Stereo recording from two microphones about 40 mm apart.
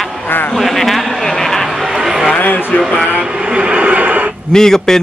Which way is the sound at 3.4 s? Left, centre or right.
Right.